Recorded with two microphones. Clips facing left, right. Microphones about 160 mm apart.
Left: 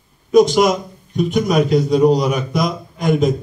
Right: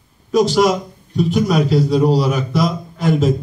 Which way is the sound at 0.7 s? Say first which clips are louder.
Even; 35° right (ahead or behind).